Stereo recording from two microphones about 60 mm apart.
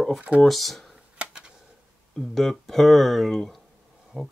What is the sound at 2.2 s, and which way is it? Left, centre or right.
Speech, centre.